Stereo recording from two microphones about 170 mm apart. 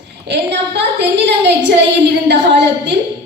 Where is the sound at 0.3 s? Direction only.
90° right.